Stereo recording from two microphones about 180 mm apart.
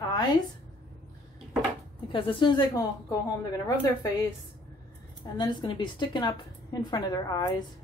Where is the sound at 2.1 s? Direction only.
30° left (ahead or behind).